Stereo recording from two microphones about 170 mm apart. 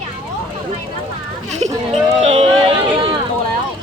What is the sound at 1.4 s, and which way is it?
Speech, 40° right (ahead or behind).